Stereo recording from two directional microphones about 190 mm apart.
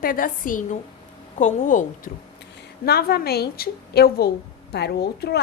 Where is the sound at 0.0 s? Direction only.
50° left (ahead or behind).